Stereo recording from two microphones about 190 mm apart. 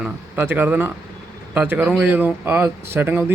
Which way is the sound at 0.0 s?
10° right (ahead or behind).